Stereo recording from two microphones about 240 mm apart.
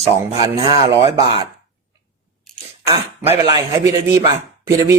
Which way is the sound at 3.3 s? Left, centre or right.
Centre.